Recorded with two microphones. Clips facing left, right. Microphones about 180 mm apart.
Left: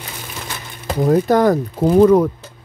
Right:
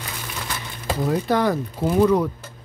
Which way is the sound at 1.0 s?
45° left (ahead or behind).